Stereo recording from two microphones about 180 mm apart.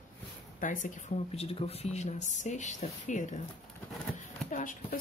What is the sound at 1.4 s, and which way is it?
Speech, 35° left (ahead or behind).